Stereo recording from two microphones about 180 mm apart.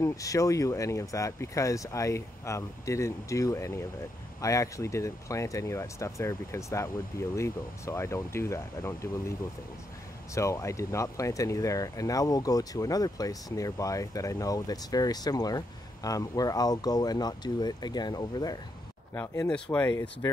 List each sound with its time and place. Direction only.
0.0 s speech: 20° left (ahead or behind)
10.3 s speech: 15° left (ahead or behind)
19.1 s speech: 10° left (ahead or behind)